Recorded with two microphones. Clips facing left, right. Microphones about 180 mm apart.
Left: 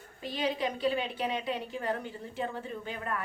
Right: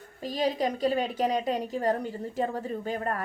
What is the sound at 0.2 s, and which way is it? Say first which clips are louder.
A woman's voice: right 4 dB; 40° right (ahead or behind).